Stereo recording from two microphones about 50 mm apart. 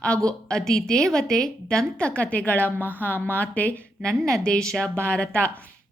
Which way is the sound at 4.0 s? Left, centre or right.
Centre.